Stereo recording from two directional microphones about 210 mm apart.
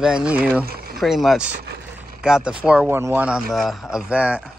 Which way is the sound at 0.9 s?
Centre (ahead or behind).